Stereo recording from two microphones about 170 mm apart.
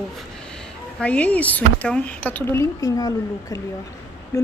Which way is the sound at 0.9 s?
10° left (ahead or behind).